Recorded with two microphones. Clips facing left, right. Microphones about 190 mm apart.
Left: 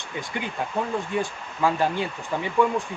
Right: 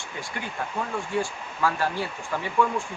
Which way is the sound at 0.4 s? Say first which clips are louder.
Left 4 dB; 20° left (ahead or behind).